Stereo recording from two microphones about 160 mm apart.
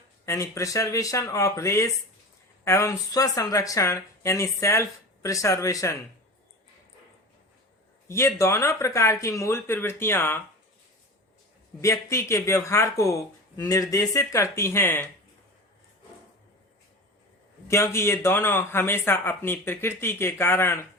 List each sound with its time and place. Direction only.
0.3 s speech: 20° left (ahead or behind)
8.0 s speech: 15° left (ahead or behind)
11.8 s speech: 20° left (ahead or behind)
17.7 s speech: 15° left (ahead or behind)